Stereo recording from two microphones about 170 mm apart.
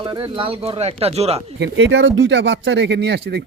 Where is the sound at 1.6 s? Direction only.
90° right.